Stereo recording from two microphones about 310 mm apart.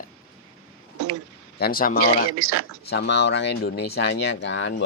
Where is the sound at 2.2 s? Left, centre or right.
Right.